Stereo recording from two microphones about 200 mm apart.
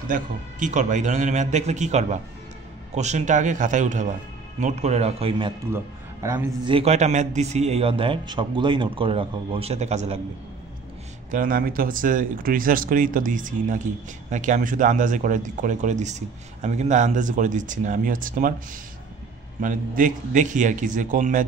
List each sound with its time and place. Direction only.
0.1 s speech: 40° right (ahead or behind)
6.6 s a man's voice: 30° right (ahead or behind)
11.2 s speech: 40° right (ahead or behind)
19.6 s speech: 40° right (ahead or behind)